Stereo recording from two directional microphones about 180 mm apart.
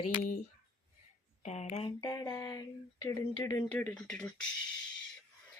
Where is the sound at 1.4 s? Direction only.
40° left (ahead or behind).